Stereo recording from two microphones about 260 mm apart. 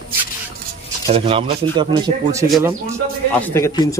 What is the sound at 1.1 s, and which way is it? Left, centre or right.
A man's voice, right.